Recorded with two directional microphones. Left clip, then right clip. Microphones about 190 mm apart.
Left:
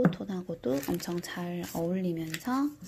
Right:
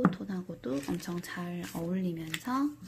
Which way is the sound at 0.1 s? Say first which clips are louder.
Left 3 dB; 15° left (ahead or behind).